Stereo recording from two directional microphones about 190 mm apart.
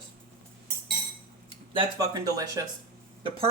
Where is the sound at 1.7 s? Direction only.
20° right (ahead or behind).